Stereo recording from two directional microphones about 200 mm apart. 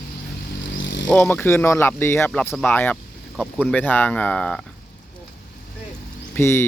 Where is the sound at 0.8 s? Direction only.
65° left (ahead or behind).